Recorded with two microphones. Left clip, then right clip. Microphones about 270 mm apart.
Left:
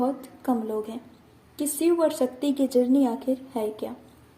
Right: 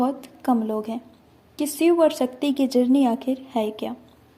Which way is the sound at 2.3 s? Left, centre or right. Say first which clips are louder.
Right 2 dB; right.